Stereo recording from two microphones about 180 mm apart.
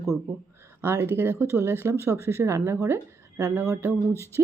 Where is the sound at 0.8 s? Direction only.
10° right (ahead or behind).